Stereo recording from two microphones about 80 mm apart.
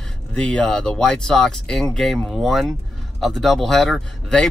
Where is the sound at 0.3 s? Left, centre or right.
Centre.